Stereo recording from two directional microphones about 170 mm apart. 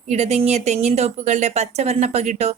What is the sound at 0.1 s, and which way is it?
Speech, 40° right (ahead or behind).